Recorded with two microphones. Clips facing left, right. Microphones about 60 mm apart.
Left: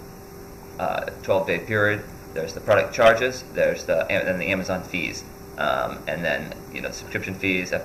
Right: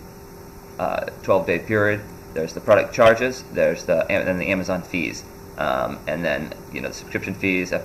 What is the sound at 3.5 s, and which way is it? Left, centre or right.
Speech, right.